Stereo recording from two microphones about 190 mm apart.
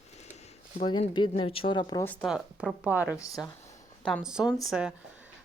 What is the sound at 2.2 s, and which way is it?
Speech, 5° right (ahead or behind).